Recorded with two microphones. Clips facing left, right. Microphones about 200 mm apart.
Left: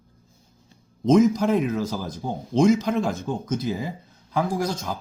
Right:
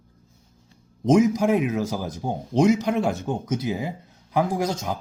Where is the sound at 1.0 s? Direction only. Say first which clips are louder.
Left 1 dB; 15° right (ahead or behind).